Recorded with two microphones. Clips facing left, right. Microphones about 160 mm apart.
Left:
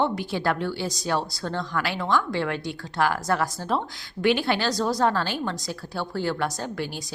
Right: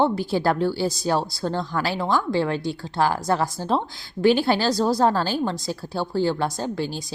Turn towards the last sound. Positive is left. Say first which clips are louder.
# right 4 dB
turn(degrees=-30)  # may be behind; listen again after turning